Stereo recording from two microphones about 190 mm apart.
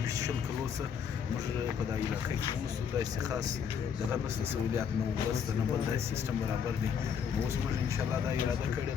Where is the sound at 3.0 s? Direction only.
20° right (ahead or behind).